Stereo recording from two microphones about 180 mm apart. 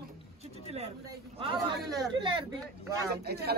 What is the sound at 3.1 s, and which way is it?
Speech, 60° right (ahead or behind).